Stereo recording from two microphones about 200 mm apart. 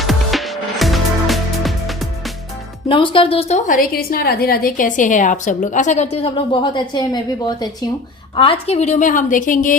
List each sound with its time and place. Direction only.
0.0 s music: centre (ahead or behind)
2.9 s speech: 25° left (ahead or behind)
3.7 s a woman's voice: 45° left (ahead or behind); by 7.2 s 20° left (ahead or behind)
8.6 s a woman's voice: 30° left (ahead or behind)